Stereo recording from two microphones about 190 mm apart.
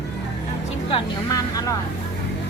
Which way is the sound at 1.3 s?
20° left (ahead or behind).